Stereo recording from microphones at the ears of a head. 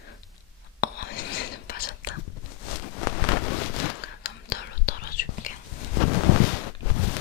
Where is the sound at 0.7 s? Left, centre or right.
Left.